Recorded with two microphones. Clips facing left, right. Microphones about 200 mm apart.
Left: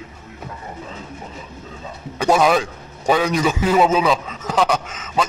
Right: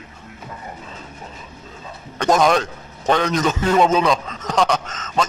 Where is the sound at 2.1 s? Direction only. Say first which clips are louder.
Even; 5° left (ahead or behind).